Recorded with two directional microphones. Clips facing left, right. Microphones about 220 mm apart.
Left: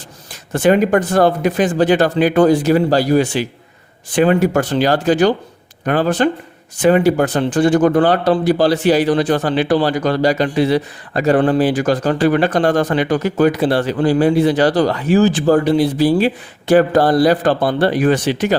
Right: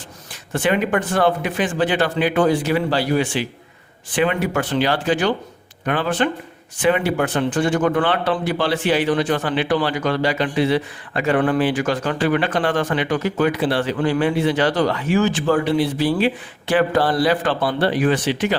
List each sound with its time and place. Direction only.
0.5 s speech: 40° left (ahead or behind)